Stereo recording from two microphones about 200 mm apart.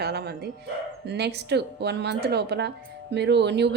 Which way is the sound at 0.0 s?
55° right (ahead or behind).